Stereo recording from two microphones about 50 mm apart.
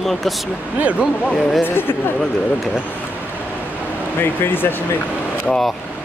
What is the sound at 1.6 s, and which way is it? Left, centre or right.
Speech, left.